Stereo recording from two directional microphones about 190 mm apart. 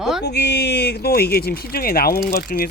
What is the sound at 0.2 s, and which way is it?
Speech, 60° left (ahead or behind).